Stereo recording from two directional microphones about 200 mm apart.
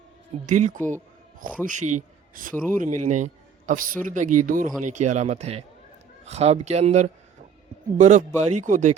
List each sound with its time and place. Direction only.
0.4 s a man's voice: 40° right (ahead or behind)